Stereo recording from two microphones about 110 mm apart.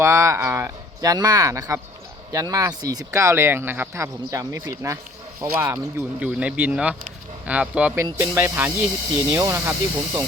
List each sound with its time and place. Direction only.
0.0 s speech: 25° right (ahead or behind)
1.1 s speech: 35° right (ahead or behind); by 7.9 s 10° right (ahead or behind)
7.9 s speech: 25° right (ahead or behind)
9.4 s speech: 30° right (ahead or behind)